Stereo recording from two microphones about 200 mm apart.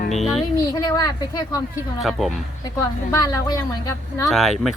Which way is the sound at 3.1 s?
20° left (ahead or behind).